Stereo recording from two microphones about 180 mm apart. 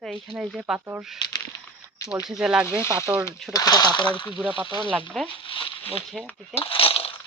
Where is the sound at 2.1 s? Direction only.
5° right (ahead or behind).